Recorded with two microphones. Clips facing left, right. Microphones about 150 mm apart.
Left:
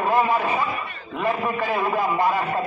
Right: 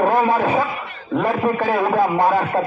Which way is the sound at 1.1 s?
45° right (ahead or behind).